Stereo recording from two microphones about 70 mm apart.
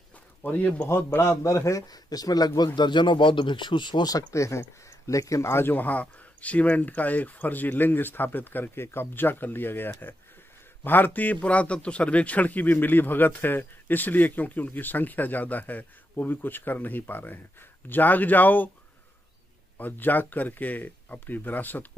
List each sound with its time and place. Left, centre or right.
0.4 s speech: left
0.8 s a man's voice: left
1.3 s speech: left
4.3 s speech: left
19.8 s speech: left